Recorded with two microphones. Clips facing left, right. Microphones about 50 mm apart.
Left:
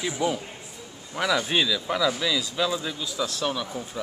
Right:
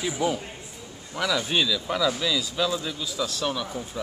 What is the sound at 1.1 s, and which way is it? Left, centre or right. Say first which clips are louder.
A man's voice: left 1 dB; centre.